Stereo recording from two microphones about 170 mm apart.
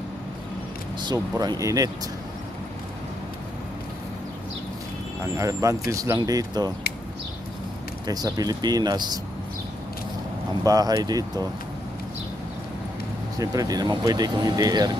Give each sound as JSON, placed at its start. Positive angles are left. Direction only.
{"t": 0.9, "sound": "speech", "side_deg": -25}
{"t": 5.4, "sound": "speech", "side_deg": -20}
{"t": 8.1, "sound": "speech", "side_deg": -20}
{"t": 10.6, "sound": "speech", "side_deg": -20}
{"t": 13.4, "sound": "speech", "side_deg": -20}